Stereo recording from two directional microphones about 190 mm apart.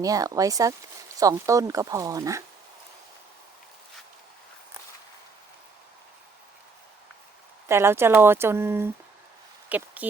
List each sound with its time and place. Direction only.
0.0 s speech: 20° right (ahead or behind)
7.7 s speech: 15° right (ahead or behind)